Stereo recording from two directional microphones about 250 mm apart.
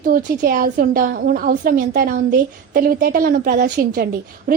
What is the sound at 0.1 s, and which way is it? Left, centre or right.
A woman's voice, right.